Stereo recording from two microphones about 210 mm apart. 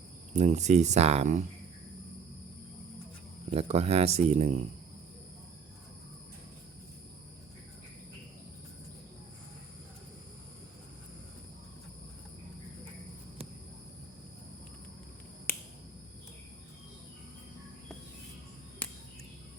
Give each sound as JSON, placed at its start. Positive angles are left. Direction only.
{"t": 0.3, "sound": "speech", "side_deg": -35}
{"t": 3.5, "sound": "speech", "side_deg": -30}